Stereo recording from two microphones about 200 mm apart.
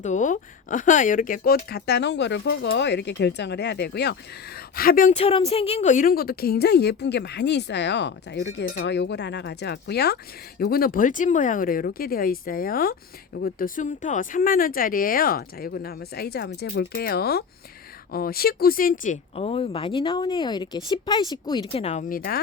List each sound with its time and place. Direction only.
0.0 s speech: 40° left (ahead or behind)
1.5 s speech: 55° left (ahead or behind)
17.0 s speech: 50° left (ahead or behind)